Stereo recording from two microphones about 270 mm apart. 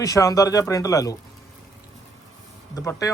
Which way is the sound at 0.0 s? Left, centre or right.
Centre.